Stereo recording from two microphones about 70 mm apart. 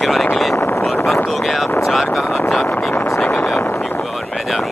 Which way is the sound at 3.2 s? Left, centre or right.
Left.